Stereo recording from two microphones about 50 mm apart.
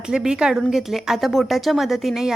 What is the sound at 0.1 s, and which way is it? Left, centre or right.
A woman's voice, centre.